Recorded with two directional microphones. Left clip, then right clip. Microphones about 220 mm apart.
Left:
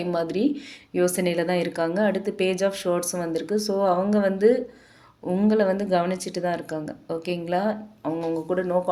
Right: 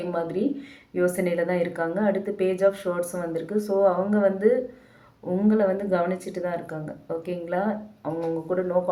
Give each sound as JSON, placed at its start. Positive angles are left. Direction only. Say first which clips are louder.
{"t": 0.1, "sound": "speech", "louder": "left 3 dB", "side_deg": 45}